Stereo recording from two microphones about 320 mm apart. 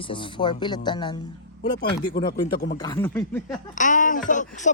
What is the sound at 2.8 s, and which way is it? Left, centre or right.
Speech, centre.